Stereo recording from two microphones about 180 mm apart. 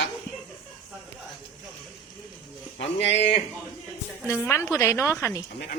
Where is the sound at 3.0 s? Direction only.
80° left.